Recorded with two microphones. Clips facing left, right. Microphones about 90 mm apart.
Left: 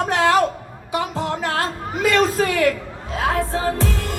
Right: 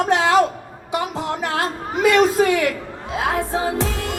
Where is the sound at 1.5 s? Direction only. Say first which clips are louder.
Right 1 dB; 20° right (ahead or behind).